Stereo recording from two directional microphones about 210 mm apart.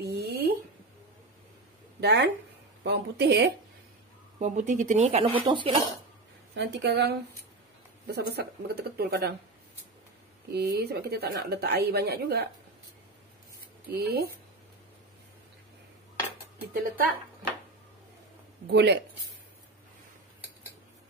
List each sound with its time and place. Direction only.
0.0 s a sound: 50° right (ahead or behind)
2.0 s a woman's voice: 55° right (ahead or behind)
4.4 s speech: 35° right (ahead or behind)
6.5 s a woman's voice: 55° right (ahead or behind)
10.5 s a woman's voice: 50° right (ahead or behind)
13.8 s a woman's voice: 50° right (ahead or behind)
18.7 s a woman's voice: 55° right (ahead or behind)